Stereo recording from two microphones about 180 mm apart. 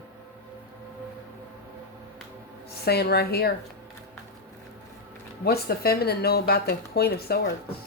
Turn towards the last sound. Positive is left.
turn(degrees=60)  # may be behind; listen again after turning